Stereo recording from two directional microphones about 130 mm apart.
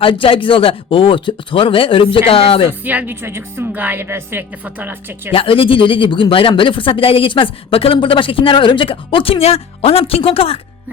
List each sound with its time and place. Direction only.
0.0 s speech: 45° left (ahead or behind)
2.8 s speech: 10° right (ahead or behind)
5.3 s speech: 45° left (ahead or behind)